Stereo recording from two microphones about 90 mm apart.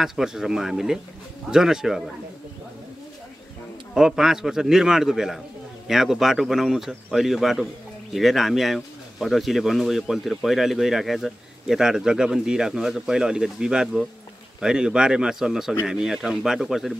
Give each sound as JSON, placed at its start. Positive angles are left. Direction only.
{"t": 0.0, "sound": "speech", "side_deg": -5}
{"t": 3.9, "sound": "speech", "side_deg": -5}